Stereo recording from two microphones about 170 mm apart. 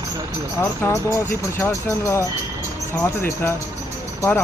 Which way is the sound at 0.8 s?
15° left (ahead or behind).